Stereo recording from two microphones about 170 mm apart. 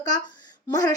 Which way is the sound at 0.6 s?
20° left (ahead or behind).